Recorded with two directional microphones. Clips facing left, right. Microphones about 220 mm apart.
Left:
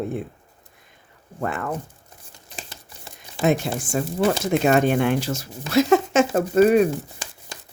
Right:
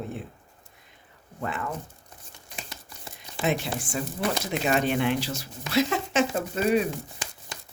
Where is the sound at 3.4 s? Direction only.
45° left (ahead or behind).